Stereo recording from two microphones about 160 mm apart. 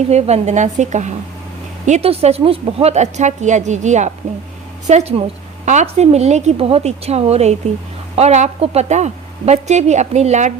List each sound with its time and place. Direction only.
0.1 s a woman's voice: 40° right (ahead or behind)